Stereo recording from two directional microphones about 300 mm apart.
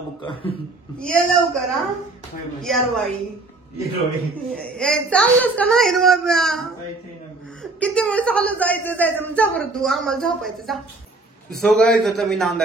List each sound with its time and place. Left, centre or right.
0.2 s a man's voice: centre
0.9 s a woman's voice: centre
4.6 s a woman's voice: centre